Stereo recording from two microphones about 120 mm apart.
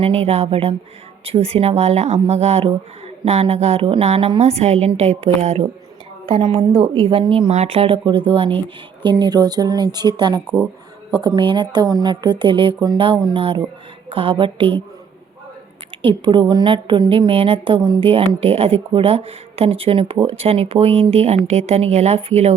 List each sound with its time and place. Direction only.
0.0 s speech: 55° right (ahead or behind)
6.2 s a woman's voice: 45° right (ahead or behind)
7.5 s a woman's voice: 60° right (ahead or behind); by 14.7 s 45° right (ahead or behind)
16.0 s a woman's voice: 40° right (ahead or behind)
17.7 s a woman's voice: 35° right (ahead or behind)
18.0 s speech: 50° right (ahead or behind)